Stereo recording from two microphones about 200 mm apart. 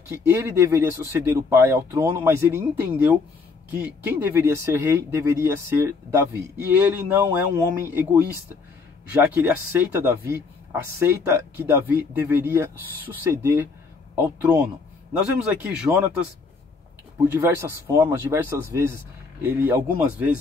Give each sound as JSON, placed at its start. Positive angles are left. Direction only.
{"t": 0.1, "sound": "speech", "side_deg": -10}
{"t": 9.1, "sound": "speech", "side_deg": -10}
{"t": 15.9, "sound": "speech", "side_deg": -15}
{"t": 17.3, "sound": "speech", "side_deg": -15}